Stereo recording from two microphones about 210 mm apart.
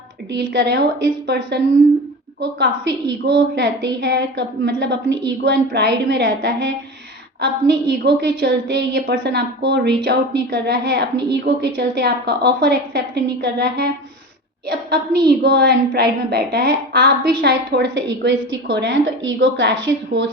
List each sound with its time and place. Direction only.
0.3 s a woman's voice: 50° right (ahead or behind)